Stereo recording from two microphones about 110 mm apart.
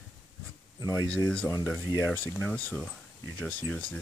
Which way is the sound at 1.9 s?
15° left (ahead or behind).